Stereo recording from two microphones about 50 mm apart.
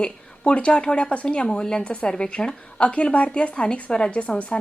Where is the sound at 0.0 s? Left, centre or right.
Left.